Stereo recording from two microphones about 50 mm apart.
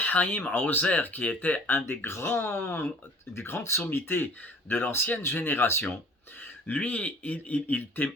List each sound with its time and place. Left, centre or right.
0.0 s speech: left
1.7 s speech: left
3.3 s speech: left
6.4 s speech: left